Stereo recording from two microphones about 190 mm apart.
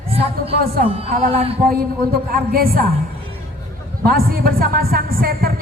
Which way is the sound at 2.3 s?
55° right (ahead or behind).